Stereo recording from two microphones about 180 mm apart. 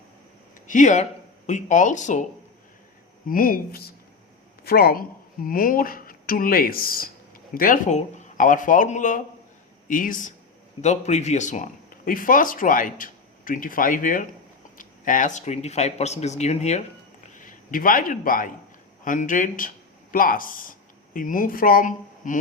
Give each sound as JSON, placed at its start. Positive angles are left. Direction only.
{"t": 0.7, "sound": "speech", "side_deg": 45}
{"t": 3.2, "sound": "speech", "side_deg": 50}
{"t": 17.3, "sound": "a man's voice", "side_deg": 50}